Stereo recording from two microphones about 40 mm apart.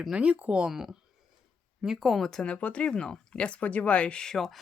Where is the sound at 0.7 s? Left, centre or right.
Centre.